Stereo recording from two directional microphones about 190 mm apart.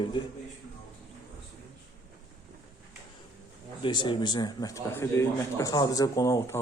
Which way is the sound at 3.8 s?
25° left (ahead or behind).